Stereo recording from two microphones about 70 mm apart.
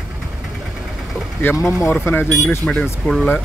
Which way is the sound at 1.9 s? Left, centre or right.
Left.